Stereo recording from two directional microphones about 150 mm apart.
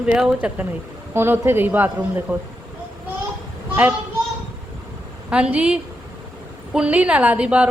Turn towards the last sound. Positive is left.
turn(degrees=-10)  # may be behind; listen again after turning